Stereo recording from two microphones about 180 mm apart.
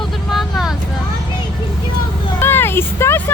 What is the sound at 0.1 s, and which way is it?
Vehicle, centre (ahead or behind).